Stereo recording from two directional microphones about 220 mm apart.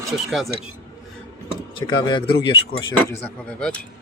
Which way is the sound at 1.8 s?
20° left (ahead or behind).